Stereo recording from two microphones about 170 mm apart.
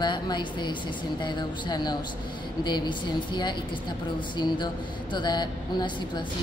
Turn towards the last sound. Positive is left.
turn(degrees=25)  # may be behind; listen again after turning